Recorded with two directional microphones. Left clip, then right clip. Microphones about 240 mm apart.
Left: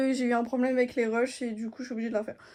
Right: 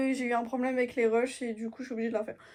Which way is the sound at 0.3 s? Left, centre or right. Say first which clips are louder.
Left 2 dB; left.